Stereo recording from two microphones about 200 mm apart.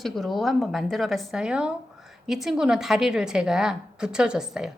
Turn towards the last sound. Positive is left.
turn(degrees=-5)  # may be behind; listen again after turning